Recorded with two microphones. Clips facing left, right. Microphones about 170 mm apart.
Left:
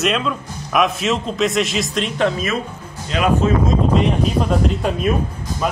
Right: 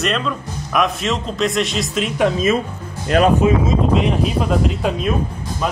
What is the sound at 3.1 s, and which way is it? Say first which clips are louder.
Speech: right 5 dB; 55° right (ahead or behind).